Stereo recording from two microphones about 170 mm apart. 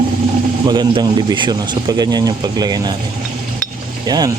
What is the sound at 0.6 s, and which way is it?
Speech, 25° right (ahead or behind).